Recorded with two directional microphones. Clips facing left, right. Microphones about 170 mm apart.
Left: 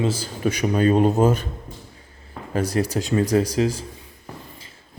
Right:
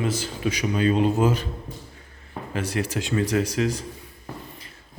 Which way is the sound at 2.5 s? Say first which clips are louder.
Left 5 dB; 40° left (ahead or behind).